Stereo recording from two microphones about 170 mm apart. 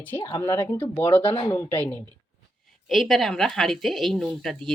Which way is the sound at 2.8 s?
Centre (ahead or behind).